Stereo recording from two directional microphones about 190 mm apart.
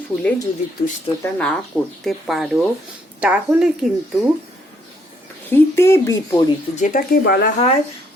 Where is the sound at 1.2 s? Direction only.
5° left (ahead or behind).